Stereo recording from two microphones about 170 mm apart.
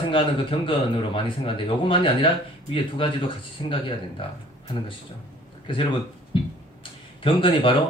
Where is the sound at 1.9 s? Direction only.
30° left (ahead or behind).